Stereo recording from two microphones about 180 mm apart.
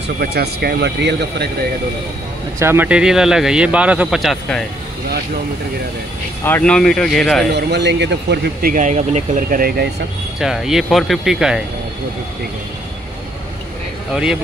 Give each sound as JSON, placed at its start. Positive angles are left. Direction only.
{"t": 0.2, "sound": "speech", "side_deg": -60}
{"t": 2.6, "sound": "speech", "side_deg": -10}
{"t": 6.4, "sound": "speech", "side_deg": 10}
{"t": 7.5, "sound": "speech", "side_deg": -70}
{"t": 8.7, "sound": "speech", "side_deg": -40}
{"t": 10.4, "sound": "speech", "side_deg": 0}
{"t": 14.1, "sound": "speech", "side_deg": -5}